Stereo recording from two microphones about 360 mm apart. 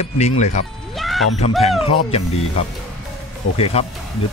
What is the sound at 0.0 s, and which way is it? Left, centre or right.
Speech, centre.